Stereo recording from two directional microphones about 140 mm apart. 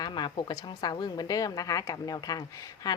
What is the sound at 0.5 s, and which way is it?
A woman's voice, 30° left (ahead or behind).